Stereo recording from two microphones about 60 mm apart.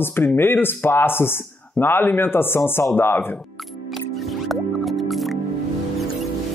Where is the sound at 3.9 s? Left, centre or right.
Centre.